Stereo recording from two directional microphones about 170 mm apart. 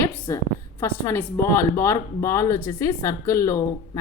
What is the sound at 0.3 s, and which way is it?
A woman's voice, 15° left (ahead or behind).